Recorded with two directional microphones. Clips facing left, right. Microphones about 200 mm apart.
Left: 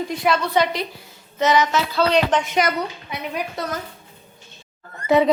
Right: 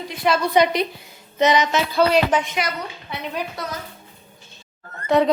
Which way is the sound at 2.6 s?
45° left (ahead or behind).